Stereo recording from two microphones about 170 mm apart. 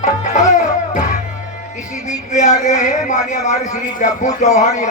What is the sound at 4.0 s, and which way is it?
Speech, 45° left (ahead or behind).